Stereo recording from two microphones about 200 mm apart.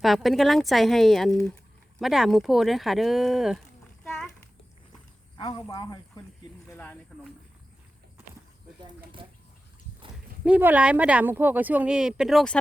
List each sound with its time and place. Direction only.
0.0 s speech: centre (ahead or behind)
5.4 s speech: 20° left (ahead or behind)
6.7 s speech: 10° left (ahead or behind)
10.4 s speech: 5° right (ahead or behind)